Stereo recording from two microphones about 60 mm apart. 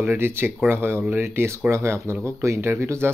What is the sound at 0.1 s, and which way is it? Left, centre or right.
Speech, right.